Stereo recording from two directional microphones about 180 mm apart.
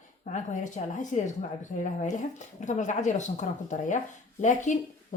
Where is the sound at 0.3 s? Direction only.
45° left (ahead or behind).